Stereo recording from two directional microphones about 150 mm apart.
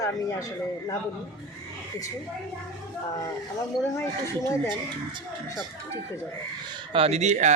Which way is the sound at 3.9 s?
20° left (ahead or behind).